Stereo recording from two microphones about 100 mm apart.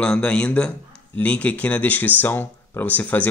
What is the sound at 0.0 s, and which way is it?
Speech, 10° left (ahead or behind).